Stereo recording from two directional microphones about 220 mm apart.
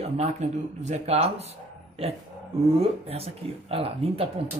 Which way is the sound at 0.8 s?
30° right (ahead or behind).